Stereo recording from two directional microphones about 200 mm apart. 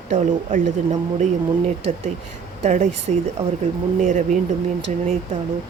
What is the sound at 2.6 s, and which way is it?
Speech, 35° right (ahead or behind).